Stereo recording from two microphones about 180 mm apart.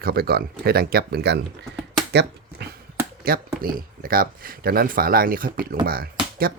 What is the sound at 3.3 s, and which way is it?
Speech, 55° right (ahead or behind).